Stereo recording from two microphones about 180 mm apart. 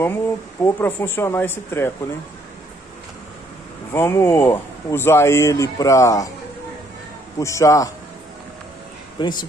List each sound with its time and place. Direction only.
0.0 s a man's voice: 10° left (ahead or behind)
3.9 s a man's voice: 15° left (ahead or behind)
7.3 s a man's voice: 15° left (ahead or behind)
9.2 s speech: 25° left (ahead or behind)